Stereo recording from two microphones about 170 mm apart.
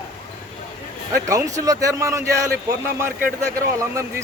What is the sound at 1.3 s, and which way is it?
A man's voice, 20° right (ahead or behind).